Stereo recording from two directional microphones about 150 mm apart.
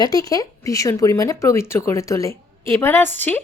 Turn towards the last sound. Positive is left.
turn(degrees=10)  # may be behind; listen again after turning